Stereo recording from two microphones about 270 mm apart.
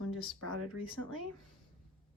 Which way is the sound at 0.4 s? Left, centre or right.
Right.